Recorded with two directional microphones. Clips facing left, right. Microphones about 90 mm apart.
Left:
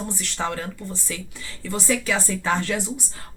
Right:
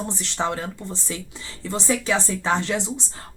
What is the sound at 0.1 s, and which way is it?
Speech, 25° right (ahead or behind).